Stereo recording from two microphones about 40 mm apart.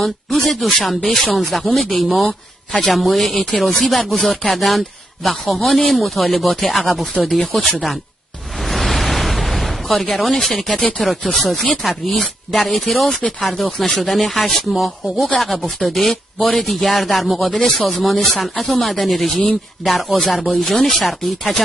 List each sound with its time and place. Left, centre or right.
0.0 s speech: centre
4.3 s speech: left
4.6 s speech: centre
7.2 s speech: centre
7.6 s speech: centre
8.6 s a sound: centre
10.1 s speech: centre
16.6 s speech: centre